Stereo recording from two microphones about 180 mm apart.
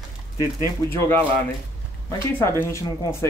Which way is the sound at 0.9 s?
10° left (ahead or behind).